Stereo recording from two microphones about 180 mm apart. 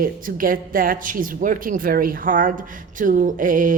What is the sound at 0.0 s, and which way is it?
Speech, 50° right (ahead or behind).